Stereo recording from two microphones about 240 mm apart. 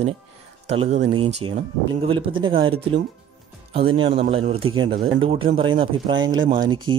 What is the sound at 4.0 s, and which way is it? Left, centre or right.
Speech, right.